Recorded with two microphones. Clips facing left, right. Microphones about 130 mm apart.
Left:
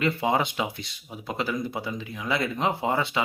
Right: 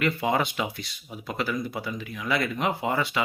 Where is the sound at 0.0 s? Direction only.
25° left (ahead or behind).